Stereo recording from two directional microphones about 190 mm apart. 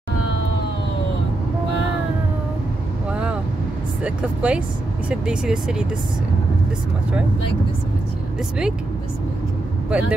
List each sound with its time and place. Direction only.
3.1 s vehicle: 5° right (ahead or behind)
4.0 s speech: 5° right (ahead or behind)
9.8 s speech: 5° right (ahead or behind)